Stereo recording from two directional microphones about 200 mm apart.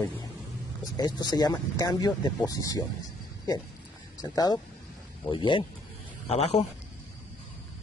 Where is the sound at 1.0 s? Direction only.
20° left (ahead or behind).